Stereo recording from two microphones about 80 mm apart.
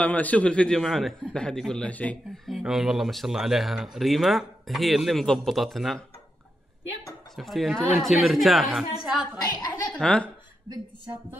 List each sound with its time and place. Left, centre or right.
0.0 s a man's voice: centre
1.9 s a man's voice: centre
2.3 s speech: centre
7.3 s speech: centre
10.0 s a man's voice: centre